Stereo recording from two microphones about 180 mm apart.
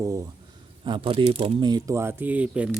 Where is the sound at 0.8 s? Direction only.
30° right (ahead or behind).